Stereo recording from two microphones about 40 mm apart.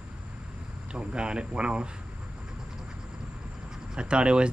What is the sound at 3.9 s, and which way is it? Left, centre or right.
Speech, right.